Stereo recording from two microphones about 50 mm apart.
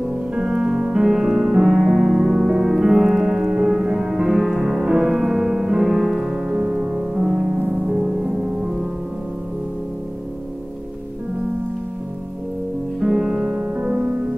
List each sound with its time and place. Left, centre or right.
0.3 s music: centre
13.0 s music: centre